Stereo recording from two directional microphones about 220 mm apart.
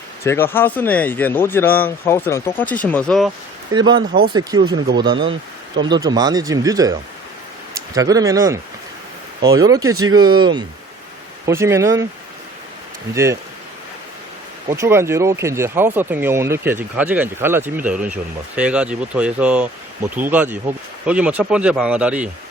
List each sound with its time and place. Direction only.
0.3 s speech: 10° left (ahead or behind)
3.7 s speech: 20° right (ahead or behind)
7.9 s speech: 15° right (ahead or behind)
13.1 s speech: 10° right (ahead or behind)
14.7 s speech: 10° right (ahead or behind)